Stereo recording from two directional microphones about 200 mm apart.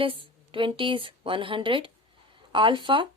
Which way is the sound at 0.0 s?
25° right (ahead or behind).